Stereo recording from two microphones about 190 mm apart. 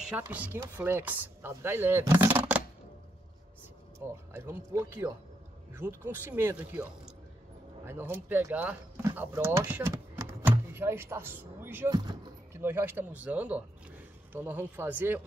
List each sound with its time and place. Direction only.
0.3 s speech: 10° right (ahead or behind)
4.3 s speech: 10° right (ahead or behind)
11.9 s basketball bounce: 20° right (ahead or behind)
12.6 s a man's voice: 10° right (ahead or behind)